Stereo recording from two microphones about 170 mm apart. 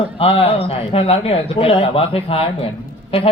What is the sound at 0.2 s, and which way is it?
A man's voice, 35° left (ahead or behind).